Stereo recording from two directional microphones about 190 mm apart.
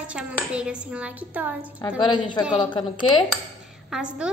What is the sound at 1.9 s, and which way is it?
Speech, 25° left (ahead or behind).